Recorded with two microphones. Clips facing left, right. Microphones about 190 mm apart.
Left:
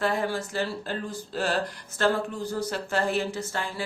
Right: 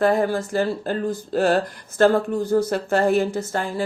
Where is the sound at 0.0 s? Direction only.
45° right (ahead or behind).